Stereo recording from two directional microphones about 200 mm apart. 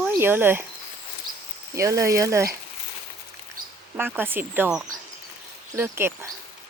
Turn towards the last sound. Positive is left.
turn(degrees=-10)  # may be behind; listen again after turning